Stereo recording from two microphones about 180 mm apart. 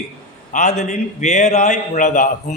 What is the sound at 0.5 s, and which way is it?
A man's voice, 40° left (ahead or behind).